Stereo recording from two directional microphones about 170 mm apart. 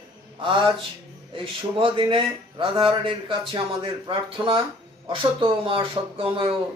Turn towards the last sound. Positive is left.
turn(degrees=-30)  # may be behind; listen again after turning